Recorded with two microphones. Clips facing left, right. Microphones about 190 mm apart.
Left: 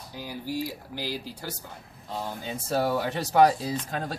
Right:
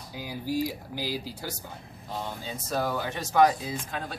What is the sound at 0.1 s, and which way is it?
Speech, 15° right (ahead or behind).